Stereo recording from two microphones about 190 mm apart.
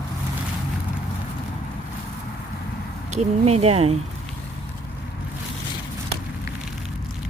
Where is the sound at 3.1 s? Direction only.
35° right (ahead or behind).